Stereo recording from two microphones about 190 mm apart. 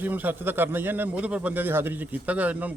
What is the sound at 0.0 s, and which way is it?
A man's voice, 10° right (ahead or behind).